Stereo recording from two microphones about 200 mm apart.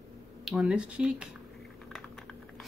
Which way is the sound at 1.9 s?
5° left (ahead or behind).